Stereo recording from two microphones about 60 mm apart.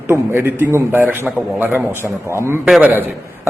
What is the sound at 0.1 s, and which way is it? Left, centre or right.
Speech, right.